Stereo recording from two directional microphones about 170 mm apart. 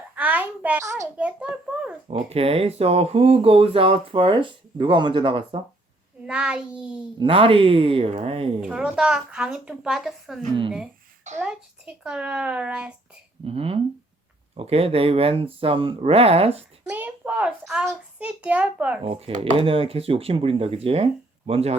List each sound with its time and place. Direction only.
0.2 s a child's voice: 10° right (ahead or behind)
1.1 s a child's voice: 5° right (ahead or behind)
2.0 s speech: 35° right (ahead or behind)
6.2 s a woman's voice: 5° right (ahead or behind)
7.2 s speech: 30° right (ahead or behind)
8.6 s a woman's voice: 5° right (ahead or behind)
13.4 s speech: 35° right (ahead or behind)
16.9 s a child's voice: 10° right (ahead or behind)
19.0 s speech: 35° right (ahead or behind)